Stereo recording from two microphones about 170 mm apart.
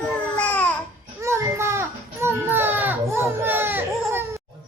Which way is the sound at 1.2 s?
15° right (ahead or behind).